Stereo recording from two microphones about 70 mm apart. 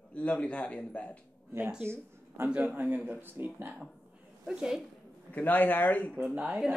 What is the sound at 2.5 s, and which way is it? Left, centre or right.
Speech, right.